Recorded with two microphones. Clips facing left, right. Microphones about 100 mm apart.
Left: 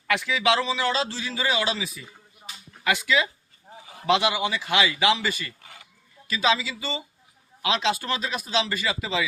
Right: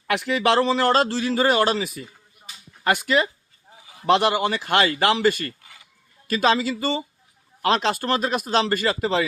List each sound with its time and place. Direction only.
0.1 s a man's voice: 55° right (ahead or behind)